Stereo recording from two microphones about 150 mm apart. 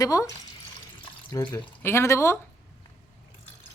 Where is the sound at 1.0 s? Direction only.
25° left (ahead or behind).